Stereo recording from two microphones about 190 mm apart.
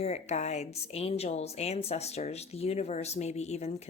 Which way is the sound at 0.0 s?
35° left (ahead or behind).